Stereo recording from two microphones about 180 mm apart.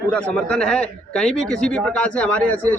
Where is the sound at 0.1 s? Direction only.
5° left (ahead or behind).